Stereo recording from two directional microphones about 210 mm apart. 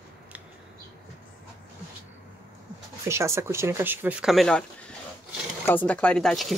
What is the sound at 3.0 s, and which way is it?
Speech, 15° right (ahead or behind).